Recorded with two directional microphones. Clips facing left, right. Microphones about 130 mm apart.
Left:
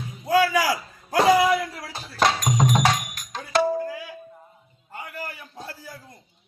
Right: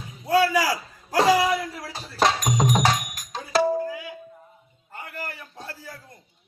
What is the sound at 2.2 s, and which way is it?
Music, centre (ahead or behind).